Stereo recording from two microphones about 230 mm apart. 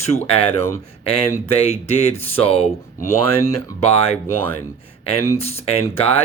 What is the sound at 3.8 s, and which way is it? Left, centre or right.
Speech, left.